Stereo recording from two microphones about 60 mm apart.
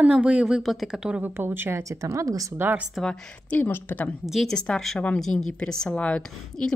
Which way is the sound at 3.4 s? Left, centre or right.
Left.